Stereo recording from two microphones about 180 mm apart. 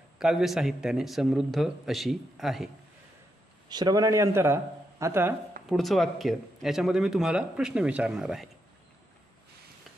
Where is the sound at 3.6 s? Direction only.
25° right (ahead or behind).